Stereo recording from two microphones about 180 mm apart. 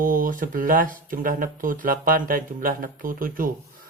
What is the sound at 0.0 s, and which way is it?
Speech, 50° right (ahead or behind).